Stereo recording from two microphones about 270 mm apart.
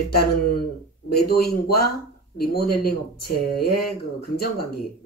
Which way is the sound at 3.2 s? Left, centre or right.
Left.